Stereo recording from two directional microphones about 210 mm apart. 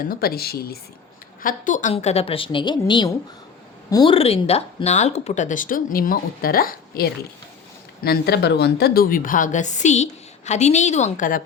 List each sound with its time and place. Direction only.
0.0 s a woman's voice: 45° left (ahead or behind)